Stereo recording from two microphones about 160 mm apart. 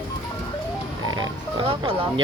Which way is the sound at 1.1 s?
30° right (ahead or behind).